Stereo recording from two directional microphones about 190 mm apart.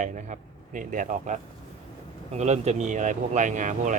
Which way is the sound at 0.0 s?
40° right (ahead or behind).